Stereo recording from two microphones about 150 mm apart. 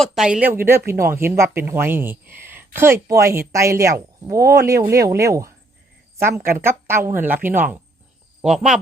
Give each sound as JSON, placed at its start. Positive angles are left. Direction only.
{"t": 0.0, "sound": "speech", "side_deg": 0}
{"t": 8.4, "sound": "speech", "side_deg": 0}